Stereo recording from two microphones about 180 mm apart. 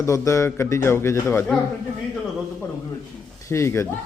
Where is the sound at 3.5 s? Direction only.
15° left (ahead or behind).